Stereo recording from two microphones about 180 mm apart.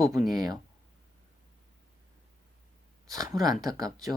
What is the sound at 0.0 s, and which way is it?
Speech, 20° right (ahead or behind).